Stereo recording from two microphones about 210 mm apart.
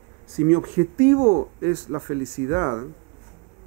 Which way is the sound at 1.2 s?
35° right (ahead or behind).